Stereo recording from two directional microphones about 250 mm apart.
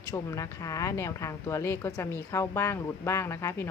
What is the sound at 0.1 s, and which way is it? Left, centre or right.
A woman's voice, centre.